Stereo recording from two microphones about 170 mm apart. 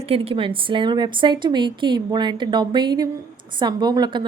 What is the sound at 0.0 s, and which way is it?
Speech, 35° right (ahead or behind).